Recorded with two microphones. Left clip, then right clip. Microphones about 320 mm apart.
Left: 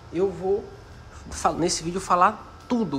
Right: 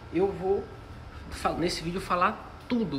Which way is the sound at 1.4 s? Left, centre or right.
Centre.